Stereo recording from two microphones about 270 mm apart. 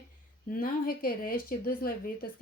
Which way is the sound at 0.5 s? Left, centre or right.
Left.